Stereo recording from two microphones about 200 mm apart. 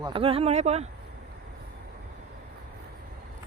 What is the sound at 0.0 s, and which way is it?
Speech, 25° right (ahead or behind).